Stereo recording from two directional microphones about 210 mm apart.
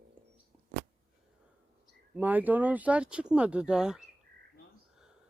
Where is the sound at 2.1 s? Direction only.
10° right (ahead or behind).